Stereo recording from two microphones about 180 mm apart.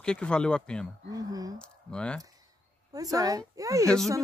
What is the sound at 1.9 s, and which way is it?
Speech, 5° left (ahead or behind).